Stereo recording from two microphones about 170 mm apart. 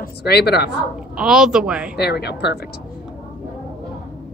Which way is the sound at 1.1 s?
5° right (ahead or behind).